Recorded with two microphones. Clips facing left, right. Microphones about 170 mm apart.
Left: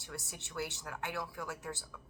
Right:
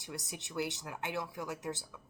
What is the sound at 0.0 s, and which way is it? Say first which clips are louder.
A woman's voice: right 3 dB; 15° right (ahead or behind).